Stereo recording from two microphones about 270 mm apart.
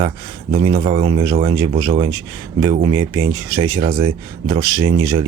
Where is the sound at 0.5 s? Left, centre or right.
Right.